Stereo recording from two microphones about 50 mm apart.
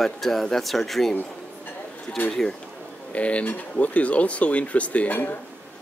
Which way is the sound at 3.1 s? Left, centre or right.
Left.